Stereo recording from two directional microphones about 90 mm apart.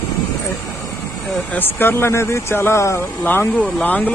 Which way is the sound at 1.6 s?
25° left (ahead or behind).